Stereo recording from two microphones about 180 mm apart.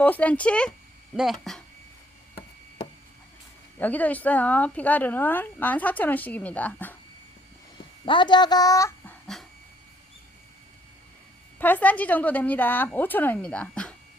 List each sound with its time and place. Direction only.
0.0 s speech: 10° left (ahead or behind)
3.8 s speech: 10° left (ahead or behind)
8.0 s speech: 25° left (ahead or behind)
9.2 s dog: centre (ahead or behind)
11.6 s speech: 10° left (ahead or behind)